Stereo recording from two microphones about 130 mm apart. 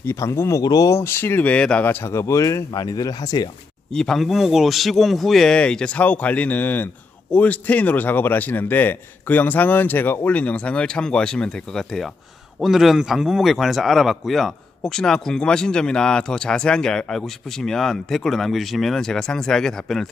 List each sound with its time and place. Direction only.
0.0 s speech: 20° left (ahead or behind)
3.9 s a man's voice: 5° left (ahead or behind)